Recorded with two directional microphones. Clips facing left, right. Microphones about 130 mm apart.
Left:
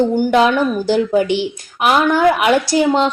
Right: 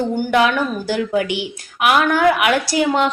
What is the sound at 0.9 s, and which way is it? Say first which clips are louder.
A woman's voice: left 5 dB; 30° left (ahead or behind).